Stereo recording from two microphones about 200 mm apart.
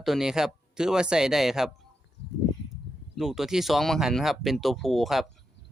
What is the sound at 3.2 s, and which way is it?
Speech, centre (ahead or behind).